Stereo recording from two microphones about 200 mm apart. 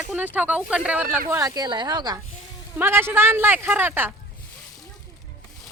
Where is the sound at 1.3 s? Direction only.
15° right (ahead or behind).